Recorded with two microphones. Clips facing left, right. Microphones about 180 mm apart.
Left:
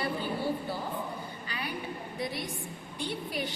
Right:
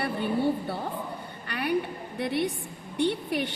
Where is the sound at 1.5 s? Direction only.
65° right (ahead or behind).